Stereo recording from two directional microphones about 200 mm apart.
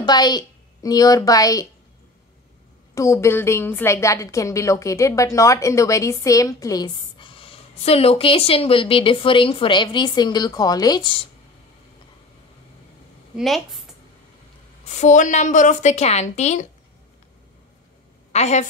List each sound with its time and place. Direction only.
0.0 s a woman's voice: 20° left (ahead or behind)
2.9 s a woman's voice: 15° left (ahead or behind)
13.4 s a woman's voice: centre (ahead or behind)
15.0 s a woman's voice: 40° left (ahead or behind)
18.3 s a woman's voice: 35° left (ahead or behind)